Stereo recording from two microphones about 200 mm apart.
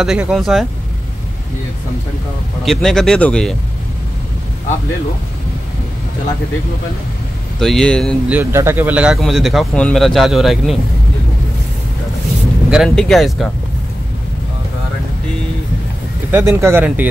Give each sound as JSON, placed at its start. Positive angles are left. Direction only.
{"t": 0.0, "sound": "speech", "side_deg": -5}
{"t": 2.6, "sound": "speech", "side_deg": 0}
{"t": 7.6, "sound": "speech", "side_deg": 5}
{"t": 8.3, "sound": "speech", "side_deg": -10}
{"t": 12.6, "sound": "speech", "side_deg": 0}
{"t": 16.3, "sound": "speech", "side_deg": -10}